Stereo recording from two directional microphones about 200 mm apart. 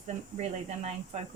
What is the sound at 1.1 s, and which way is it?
Speech, 30° right (ahead or behind).